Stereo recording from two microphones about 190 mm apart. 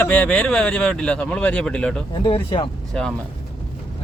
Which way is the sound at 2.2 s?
25° left (ahead or behind).